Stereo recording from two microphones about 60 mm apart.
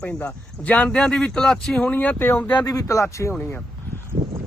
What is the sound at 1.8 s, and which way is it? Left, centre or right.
Speech, left.